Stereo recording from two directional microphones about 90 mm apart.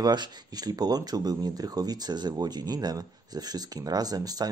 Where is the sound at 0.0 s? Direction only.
50° right (ahead or behind).